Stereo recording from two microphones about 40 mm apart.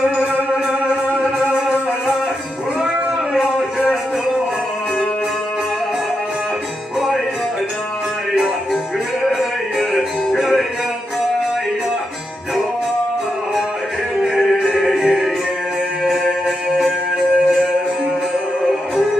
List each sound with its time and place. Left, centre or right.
1.4 s music: right
9.4 s music: centre
14.6 s music: centre